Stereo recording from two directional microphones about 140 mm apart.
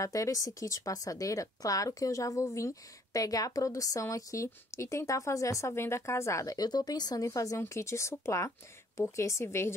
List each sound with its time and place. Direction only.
0.0 s speech: 25° left (ahead or behind)